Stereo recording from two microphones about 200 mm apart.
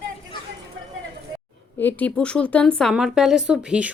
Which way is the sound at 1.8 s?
10° left (ahead or behind).